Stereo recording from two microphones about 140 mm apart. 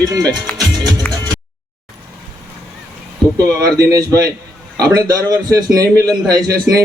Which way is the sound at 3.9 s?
25° right (ahead or behind).